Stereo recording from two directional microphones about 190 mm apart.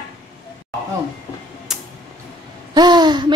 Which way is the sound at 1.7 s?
Centre (ahead or behind).